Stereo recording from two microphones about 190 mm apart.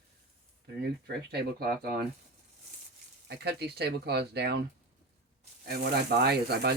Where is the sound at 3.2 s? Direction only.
60° right (ahead or behind).